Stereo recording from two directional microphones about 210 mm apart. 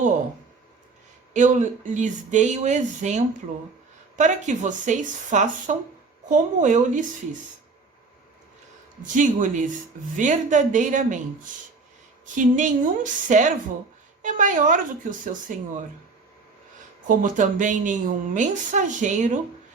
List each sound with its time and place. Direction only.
1.3 s speech: 35° right (ahead or behind)
9.1 s speech: 35° right (ahead or behind)
12.2 s speech: 35° right (ahead or behind)
17.1 s speech: 40° right (ahead or behind)